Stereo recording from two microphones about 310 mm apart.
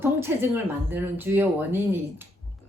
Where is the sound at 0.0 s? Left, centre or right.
Centre.